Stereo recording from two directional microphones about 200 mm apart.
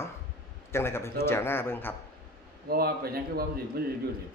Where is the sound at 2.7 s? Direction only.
50° right (ahead or behind).